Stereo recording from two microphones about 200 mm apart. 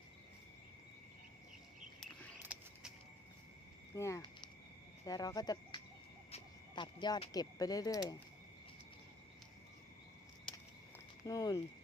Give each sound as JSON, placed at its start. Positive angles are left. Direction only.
{"t": 2.4, "sound": "a sound", "side_deg": -5}
{"t": 3.9, "sound": "speech", "side_deg": 15}
{"t": 11.3, "sound": "speech", "side_deg": 20}